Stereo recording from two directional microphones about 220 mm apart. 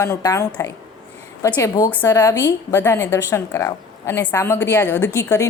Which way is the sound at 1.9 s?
15° left (ahead or behind).